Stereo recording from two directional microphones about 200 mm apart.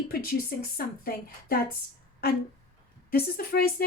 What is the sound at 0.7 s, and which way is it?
Speech, 50° left (ahead or behind).